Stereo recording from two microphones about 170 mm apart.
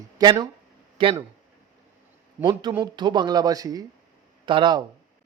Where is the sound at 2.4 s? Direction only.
25° right (ahead or behind).